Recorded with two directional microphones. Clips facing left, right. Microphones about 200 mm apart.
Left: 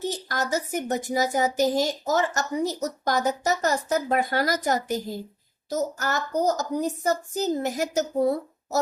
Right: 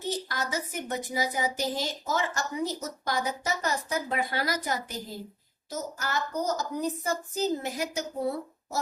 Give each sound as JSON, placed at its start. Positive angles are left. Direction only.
{"t": 0.3, "sound": "a woman's voice", "side_deg": 45}